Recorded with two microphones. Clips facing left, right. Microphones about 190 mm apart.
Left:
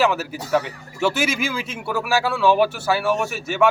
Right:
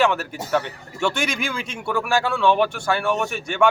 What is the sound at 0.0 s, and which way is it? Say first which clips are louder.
Speech: even; 5° left (ahead or behind).